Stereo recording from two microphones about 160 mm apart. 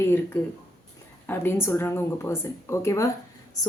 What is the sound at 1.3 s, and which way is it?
A woman's voice, 15° left (ahead or behind).